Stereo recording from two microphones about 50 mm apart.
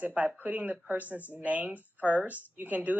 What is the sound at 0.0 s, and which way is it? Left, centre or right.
Speech, right.